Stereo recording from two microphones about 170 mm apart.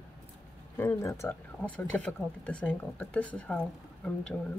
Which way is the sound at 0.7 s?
15° left (ahead or behind).